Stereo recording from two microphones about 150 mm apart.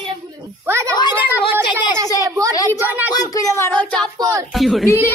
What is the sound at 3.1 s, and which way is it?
Speech, 20° left (ahead or behind).